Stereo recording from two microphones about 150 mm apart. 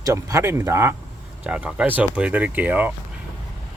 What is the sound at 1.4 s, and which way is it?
Speech, 5° right (ahead or behind).